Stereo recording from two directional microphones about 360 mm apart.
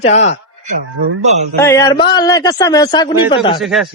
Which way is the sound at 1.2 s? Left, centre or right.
Centre.